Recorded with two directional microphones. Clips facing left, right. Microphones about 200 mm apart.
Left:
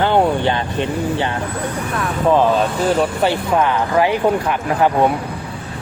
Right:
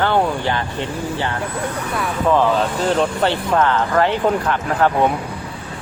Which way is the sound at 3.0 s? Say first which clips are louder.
Left 1 dB; 10° left (ahead or behind).